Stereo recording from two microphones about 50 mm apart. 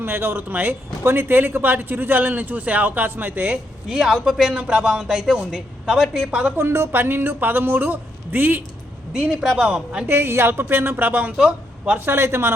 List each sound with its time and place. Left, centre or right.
0.0 s a man's voice: right
3.8 s a woman's voice: centre
6.0 s a woman's voice: centre
6.6 s a woman's voice: right
9.6 s speech: right
10.1 s a woman's voice: right
11.9 s a woman's voice: right